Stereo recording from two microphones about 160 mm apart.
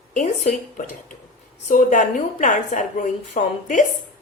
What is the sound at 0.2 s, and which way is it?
Speech, 55° left (ahead or behind).